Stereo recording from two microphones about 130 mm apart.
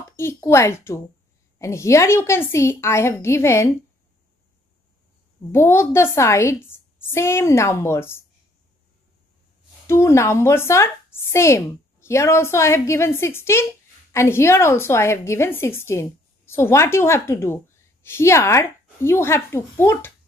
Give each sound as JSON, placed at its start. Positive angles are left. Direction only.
{"t": 0.1, "sound": "speech", "side_deg": 20}
{"t": 5.5, "sound": "speech", "side_deg": 20}
{"t": 9.8, "sound": "speech", "side_deg": 20}